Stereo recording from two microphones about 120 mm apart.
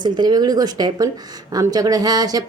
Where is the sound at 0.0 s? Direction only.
35° right (ahead or behind).